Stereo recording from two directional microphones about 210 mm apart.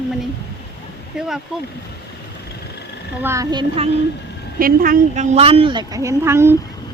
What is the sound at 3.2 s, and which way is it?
Speech, 15° right (ahead or behind).